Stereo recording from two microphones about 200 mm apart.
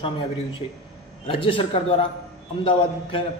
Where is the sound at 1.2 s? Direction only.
25° left (ahead or behind).